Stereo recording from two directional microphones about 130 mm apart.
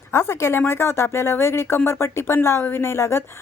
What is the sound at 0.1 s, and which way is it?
Speech, 20° left (ahead or behind).